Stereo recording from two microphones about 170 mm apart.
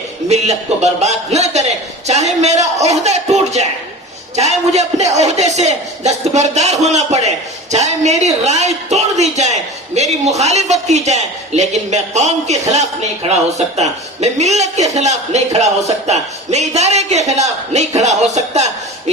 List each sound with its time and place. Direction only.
0.3 s a man's voice: 40° right (ahead or behind)